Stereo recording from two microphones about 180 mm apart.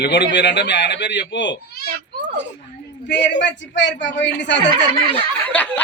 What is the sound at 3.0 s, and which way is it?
A man's voice, 75° left (ahead or behind).